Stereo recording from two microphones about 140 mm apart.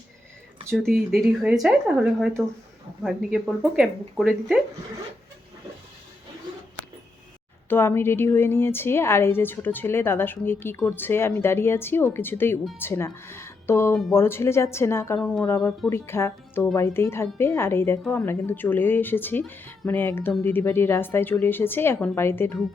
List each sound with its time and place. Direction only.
0.7 s speech: centre (ahead or behind)
7.7 s a woman's voice: 15° left (ahead or behind)
15.2 s a woman's voice: 10° left (ahead or behind)
15.4 s a woman's voice: 20° left (ahead or behind)